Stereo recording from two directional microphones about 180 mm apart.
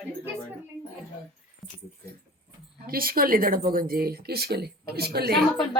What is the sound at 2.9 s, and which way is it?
Speech, 55° right (ahead or behind).